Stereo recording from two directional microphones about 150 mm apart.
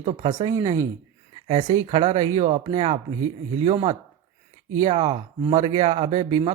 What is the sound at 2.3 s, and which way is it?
Speech, 50° right (ahead or behind).